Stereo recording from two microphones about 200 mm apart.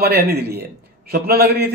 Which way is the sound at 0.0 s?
50° right (ahead or behind).